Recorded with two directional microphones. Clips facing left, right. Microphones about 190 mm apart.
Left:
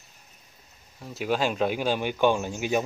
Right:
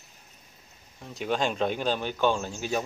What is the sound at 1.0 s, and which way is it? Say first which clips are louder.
A man's voice: left 2 dB; 5° left (ahead or behind).